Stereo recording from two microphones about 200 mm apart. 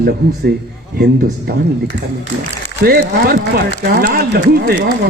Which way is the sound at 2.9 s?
50° right (ahead or behind).